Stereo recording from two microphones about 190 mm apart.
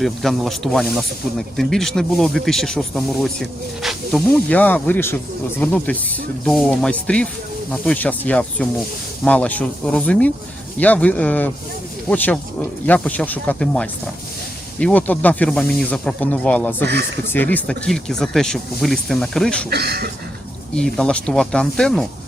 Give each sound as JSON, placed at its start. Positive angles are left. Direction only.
{"t": 0.0, "sound": "speech", "side_deg": 0}
{"t": 16.8, "sound": "speech", "side_deg": -60}
{"t": 17.2, "sound": "speech", "side_deg": 10}
{"t": 19.7, "sound": "speech", "side_deg": -55}
{"t": 20.7, "sound": "speech", "side_deg": 5}